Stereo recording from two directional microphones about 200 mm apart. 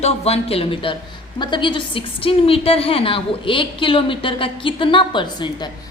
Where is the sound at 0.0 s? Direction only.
30° left (ahead or behind).